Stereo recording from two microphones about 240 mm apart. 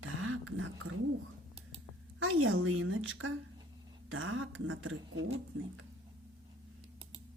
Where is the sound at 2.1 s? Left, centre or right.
Right.